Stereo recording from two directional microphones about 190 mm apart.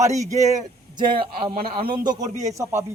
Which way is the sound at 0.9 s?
25° right (ahead or behind).